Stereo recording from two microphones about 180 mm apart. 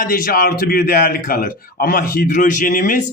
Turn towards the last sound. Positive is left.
turn(degrees=50)  # may be behind; listen again after turning